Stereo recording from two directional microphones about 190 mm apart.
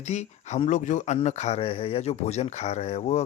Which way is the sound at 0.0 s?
35° left (ahead or behind).